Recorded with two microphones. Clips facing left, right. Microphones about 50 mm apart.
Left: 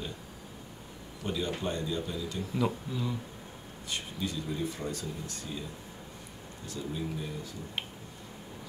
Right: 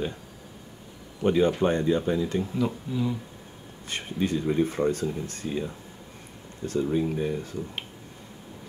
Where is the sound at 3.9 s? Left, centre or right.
Right.